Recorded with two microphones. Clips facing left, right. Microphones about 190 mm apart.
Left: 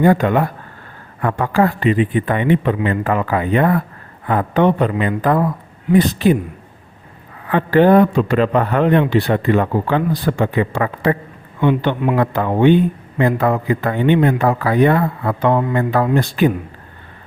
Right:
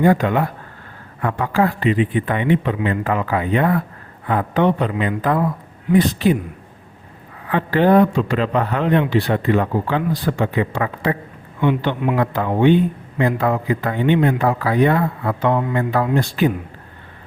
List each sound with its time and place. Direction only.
0.0 s a man's voice: 50° left (ahead or behind)
7.5 s a man's voice: 55° left (ahead or behind)